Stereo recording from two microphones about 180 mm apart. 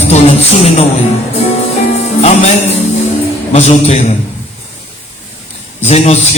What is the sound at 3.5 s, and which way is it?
Music, 35° left (ahead or behind).